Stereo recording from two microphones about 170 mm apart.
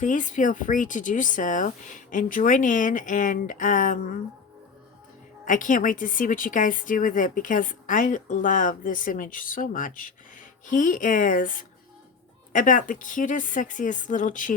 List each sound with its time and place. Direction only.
0.0 s a woman's voice: 45° left (ahead or behind)
5.5 s a woman's voice: 50° left (ahead or behind)